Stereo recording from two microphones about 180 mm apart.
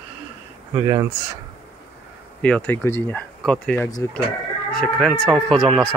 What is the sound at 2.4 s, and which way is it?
Speech, 10° left (ahead or behind).